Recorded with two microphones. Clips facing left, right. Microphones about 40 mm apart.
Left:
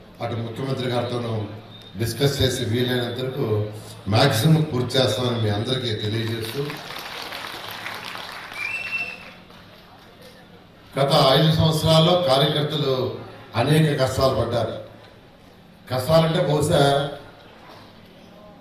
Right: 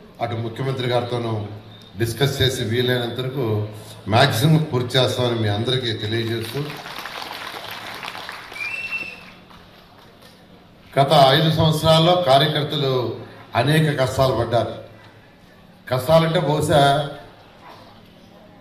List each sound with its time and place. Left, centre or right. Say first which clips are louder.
0.2 s a man's voice: right 3 dB; right
6.7 s a sound: right 2 dB; right
8.0 s applause: right 2 dB; right
8.4 s applause: even; left
9.0 s a sound: left 1 dB; left
10.9 s a man's voice: right 3 dB; right
15.9 s a man's voice: right 2 dB; right
16.9 s speech: right 1 dB; left